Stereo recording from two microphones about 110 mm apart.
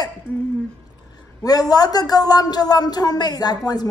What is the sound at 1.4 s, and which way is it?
Speech, 35° left (ahead or behind).